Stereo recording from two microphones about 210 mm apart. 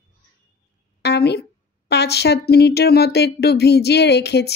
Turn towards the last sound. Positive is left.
turn(degrees=50)  # may be behind; listen again after turning